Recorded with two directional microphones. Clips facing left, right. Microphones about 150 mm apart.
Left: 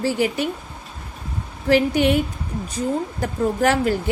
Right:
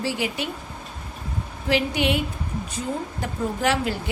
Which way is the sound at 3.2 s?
45° left (ahead or behind).